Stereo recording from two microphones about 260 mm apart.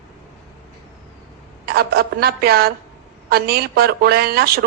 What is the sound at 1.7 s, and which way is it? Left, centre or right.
Speech, right.